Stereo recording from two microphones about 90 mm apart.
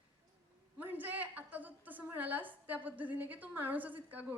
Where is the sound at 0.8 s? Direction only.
20° right (ahead or behind).